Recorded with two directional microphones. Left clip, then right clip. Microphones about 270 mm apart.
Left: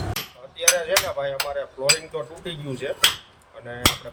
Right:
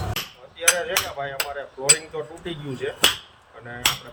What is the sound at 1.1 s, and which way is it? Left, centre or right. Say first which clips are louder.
Speech: left 2 dB; centre.